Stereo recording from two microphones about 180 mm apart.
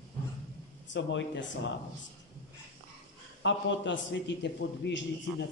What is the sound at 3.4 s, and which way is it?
A man's voice, 90° left.